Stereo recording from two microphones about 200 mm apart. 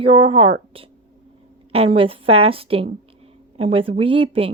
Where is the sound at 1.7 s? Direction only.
30° right (ahead or behind).